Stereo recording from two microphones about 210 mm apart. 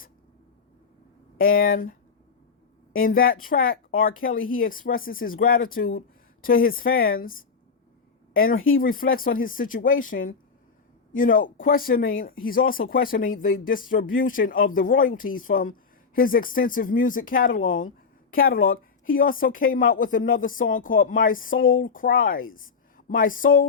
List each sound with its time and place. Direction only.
1.4 s speech: 45° left (ahead or behind)
3.0 s a woman's voice: 45° left (ahead or behind)